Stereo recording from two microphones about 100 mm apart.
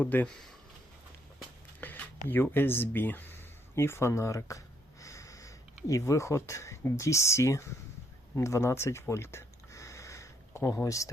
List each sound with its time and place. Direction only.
0.0 s speech: 15° left (ahead or behind)
1.8 s speech: 20° left (ahead or behind)
8.4 s a sound: 30° left (ahead or behind)